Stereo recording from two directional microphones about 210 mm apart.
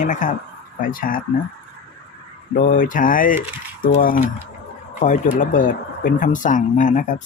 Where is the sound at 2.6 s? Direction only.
40° left (ahead or behind).